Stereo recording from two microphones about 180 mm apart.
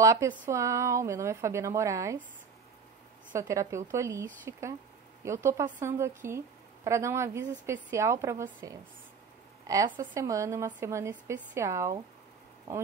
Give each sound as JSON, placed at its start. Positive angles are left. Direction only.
{"t": 0.0, "sound": "a woman's voice", "side_deg": -20}
{"t": 3.3, "sound": "a woman's voice", "side_deg": -15}